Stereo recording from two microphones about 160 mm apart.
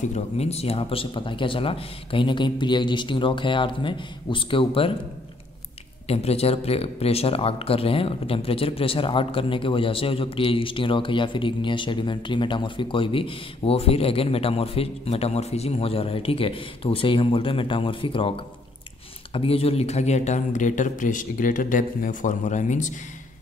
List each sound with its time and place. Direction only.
0.0 s speech: 45° left (ahead or behind)
6.0 s speech: 40° left (ahead or behind)